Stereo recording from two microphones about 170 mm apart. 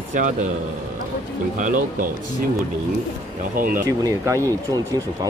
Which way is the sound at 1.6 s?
50° right (ahead or behind).